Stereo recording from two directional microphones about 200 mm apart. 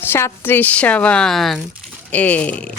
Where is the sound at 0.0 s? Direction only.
10° left (ahead or behind).